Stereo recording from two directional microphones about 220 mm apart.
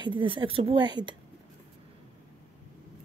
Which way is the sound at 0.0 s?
20° right (ahead or behind).